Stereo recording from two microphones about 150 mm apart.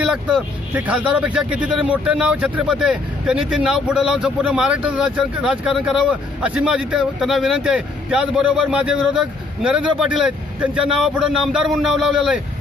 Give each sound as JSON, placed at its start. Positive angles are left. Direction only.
{"t": 0.0, "sound": "speech", "side_deg": -5}